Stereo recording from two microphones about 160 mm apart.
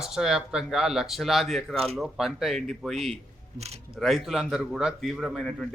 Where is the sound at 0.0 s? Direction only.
5° right (ahead or behind).